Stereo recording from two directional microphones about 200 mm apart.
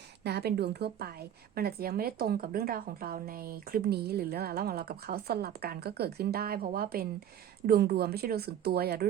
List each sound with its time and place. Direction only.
0.3 s a woman's voice: 55° right (ahead or behind)